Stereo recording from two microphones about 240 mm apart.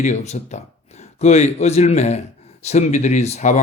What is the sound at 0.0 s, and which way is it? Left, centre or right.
Speech, left.